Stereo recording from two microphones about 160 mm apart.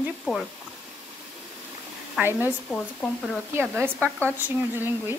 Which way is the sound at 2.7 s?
5° left (ahead or behind).